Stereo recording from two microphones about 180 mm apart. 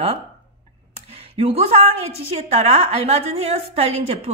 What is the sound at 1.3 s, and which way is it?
A woman's voice, 35° right (ahead or behind).